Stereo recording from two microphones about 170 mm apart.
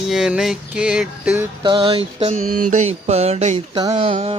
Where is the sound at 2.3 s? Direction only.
45° right (ahead or behind).